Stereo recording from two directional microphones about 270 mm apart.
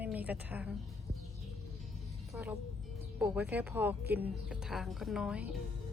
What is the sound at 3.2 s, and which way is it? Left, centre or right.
Speech, centre.